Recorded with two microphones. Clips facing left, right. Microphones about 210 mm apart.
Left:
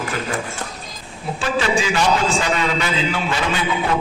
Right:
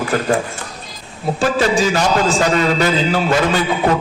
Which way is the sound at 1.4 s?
40° right (ahead or behind).